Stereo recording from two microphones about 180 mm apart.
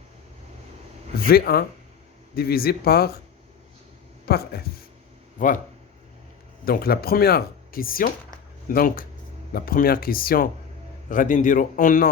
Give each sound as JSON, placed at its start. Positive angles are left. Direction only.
{"t": 1.2, "sound": "speech", "side_deg": 55}
{"t": 4.3, "sound": "speech", "side_deg": 60}
{"t": 5.4, "sound": "speech", "side_deg": 45}
{"t": 6.7, "sound": "speech", "side_deg": 55}